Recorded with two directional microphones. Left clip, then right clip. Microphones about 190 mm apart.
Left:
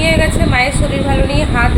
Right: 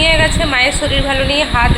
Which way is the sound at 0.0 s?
Centre (ahead or behind).